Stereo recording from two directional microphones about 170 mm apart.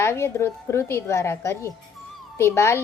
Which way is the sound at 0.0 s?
15° left (ahead or behind).